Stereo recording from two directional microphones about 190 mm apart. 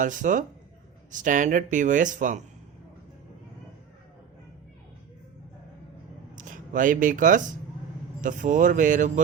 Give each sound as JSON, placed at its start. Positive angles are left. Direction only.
{"t": 0.0, "sound": "speech", "side_deg": -40}
{"t": 6.3, "sound": "speech", "side_deg": -45}